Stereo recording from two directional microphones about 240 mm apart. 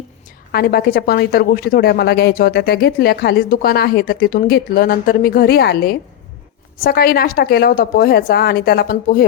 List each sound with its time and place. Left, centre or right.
0.5 s a woman's voice: left